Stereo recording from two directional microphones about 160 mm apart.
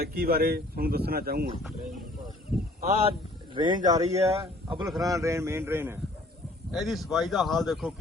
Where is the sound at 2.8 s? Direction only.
40° right (ahead or behind); by 6.0 s 15° right (ahead or behind).